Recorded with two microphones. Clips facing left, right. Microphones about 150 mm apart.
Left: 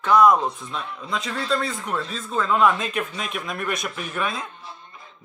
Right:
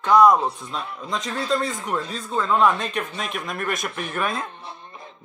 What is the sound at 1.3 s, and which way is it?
Speech, 20° right (ahead or behind).